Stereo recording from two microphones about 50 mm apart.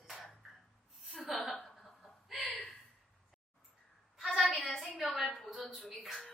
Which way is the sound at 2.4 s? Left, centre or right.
Left.